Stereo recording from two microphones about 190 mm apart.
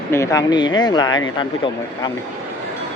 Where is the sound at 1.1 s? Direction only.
90° left.